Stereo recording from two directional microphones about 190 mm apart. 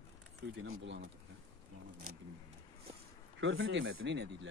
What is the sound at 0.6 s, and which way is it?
Speech, 75° right (ahead or behind).